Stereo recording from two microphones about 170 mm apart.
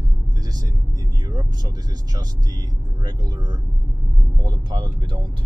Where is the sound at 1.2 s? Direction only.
25° right (ahead or behind).